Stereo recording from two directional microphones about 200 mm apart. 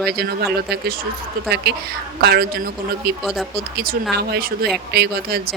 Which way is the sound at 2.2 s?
50° right (ahead or behind).